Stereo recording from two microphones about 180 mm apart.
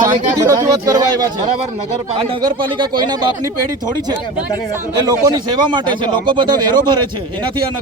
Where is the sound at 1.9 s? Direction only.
35° right (ahead or behind).